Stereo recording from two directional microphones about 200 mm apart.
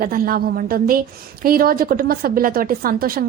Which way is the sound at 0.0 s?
45° right (ahead or behind).